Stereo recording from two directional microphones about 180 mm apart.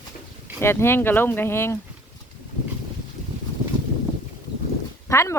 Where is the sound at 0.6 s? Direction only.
15° left (ahead or behind).